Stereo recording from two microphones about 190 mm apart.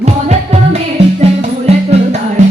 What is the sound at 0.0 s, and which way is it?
Music, 35° right (ahead or behind).